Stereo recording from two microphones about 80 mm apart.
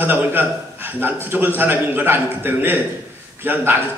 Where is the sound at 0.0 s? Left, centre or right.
Right.